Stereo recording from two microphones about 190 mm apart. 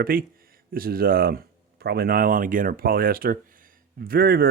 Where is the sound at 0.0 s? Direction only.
50° right (ahead or behind).